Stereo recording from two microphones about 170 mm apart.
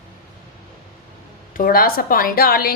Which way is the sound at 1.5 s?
60° left (ahead or behind).